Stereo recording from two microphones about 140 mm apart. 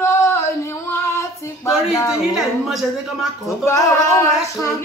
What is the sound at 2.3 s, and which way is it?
Speech, centre (ahead or behind).